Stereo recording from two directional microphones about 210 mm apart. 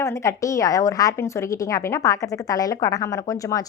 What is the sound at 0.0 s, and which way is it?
A woman's voice, 15° left (ahead or behind).